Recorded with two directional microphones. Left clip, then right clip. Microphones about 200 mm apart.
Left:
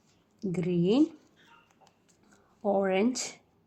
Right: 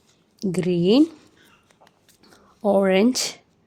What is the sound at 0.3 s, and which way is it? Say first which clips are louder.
Speech: right 8 dB; 45° right (ahead or behind).